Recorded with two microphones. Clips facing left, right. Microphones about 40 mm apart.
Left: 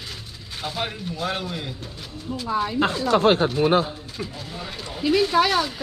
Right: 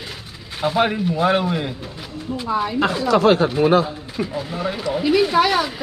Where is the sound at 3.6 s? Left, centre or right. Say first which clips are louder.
Right 4 dB; right.